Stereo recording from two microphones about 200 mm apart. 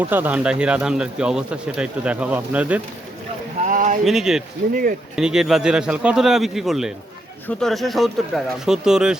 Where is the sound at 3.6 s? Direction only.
40° right (ahead or behind).